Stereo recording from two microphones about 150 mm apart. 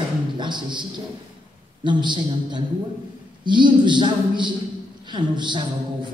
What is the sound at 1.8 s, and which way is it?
A woman's voice, 30° right (ahead or behind).